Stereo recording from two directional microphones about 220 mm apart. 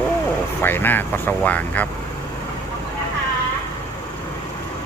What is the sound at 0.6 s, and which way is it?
Speech, 10° left (ahead or behind).